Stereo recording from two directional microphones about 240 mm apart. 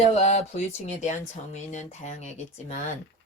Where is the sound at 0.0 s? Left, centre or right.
Left.